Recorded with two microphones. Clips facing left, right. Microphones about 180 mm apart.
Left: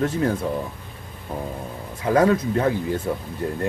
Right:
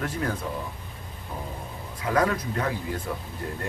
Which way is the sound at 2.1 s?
30° left (ahead or behind).